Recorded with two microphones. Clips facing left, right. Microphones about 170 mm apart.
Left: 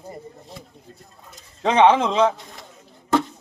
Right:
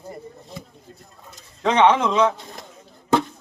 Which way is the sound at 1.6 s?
25° left (ahead or behind).